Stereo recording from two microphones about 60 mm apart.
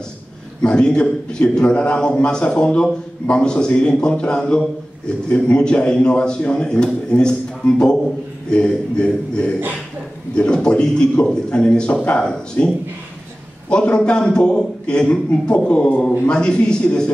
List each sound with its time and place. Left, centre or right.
0.6 s a man's voice: centre